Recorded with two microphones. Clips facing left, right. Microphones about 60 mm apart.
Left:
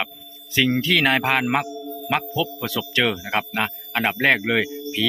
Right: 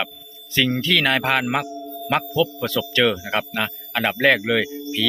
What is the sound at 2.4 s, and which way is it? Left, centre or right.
A man's voice, centre.